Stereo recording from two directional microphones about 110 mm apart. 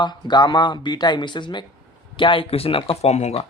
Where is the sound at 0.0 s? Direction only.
40° left (ahead or behind).